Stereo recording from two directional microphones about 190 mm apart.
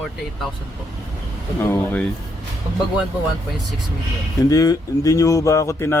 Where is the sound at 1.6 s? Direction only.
10° left (ahead or behind).